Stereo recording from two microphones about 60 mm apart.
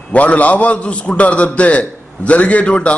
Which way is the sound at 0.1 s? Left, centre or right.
Left.